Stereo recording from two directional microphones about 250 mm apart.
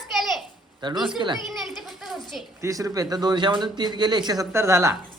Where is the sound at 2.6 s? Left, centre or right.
Centre.